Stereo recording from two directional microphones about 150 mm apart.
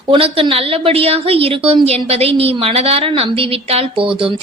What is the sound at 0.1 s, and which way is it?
A woman's voice, 35° right (ahead or behind).